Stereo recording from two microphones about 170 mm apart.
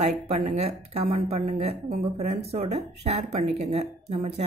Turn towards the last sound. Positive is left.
turn(degrees=-35)  # may be behind; listen again after turning